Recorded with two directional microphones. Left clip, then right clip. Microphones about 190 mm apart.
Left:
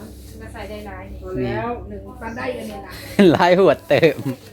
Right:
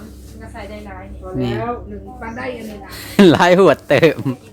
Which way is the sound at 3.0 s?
25° right (ahead or behind).